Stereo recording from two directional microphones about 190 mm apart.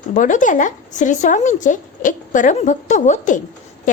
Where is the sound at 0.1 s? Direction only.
45° left (ahead or behind).